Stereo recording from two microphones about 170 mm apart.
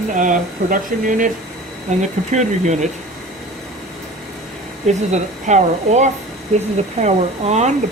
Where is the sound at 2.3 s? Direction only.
45° right (ahead or behind).